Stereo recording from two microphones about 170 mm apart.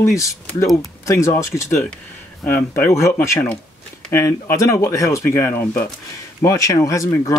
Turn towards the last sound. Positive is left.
turn(degrees=20)  # may be behind; listen again after turning